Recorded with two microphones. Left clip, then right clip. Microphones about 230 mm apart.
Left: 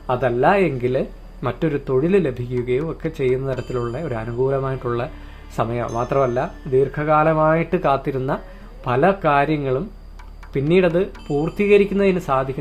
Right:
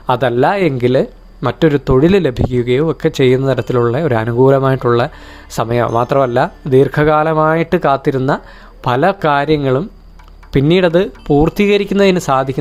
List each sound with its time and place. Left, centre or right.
0.1 s speech: right